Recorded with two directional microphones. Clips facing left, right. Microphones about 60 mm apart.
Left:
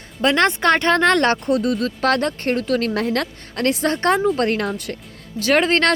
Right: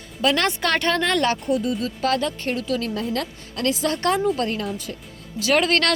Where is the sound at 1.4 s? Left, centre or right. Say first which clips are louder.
Left 3 dB; left.